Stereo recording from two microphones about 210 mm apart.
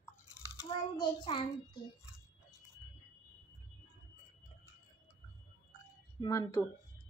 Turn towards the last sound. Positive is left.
turn(degrees=20)  # may be behind; listen again after turning